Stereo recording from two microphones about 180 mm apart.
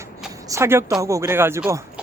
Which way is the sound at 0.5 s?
15° right (ahead or behind).